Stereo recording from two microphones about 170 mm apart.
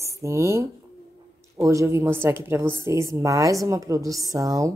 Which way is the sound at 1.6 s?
15° right (ahead or behind).